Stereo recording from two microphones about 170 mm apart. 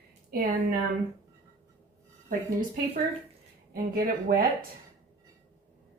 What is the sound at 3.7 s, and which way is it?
Speech, 60° right (ahead or behind).